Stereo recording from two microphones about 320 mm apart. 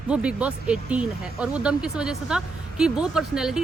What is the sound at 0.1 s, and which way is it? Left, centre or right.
Speech, centre.